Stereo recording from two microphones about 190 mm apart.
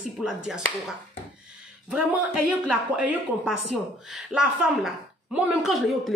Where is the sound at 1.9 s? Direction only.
5° right (ahead or behind).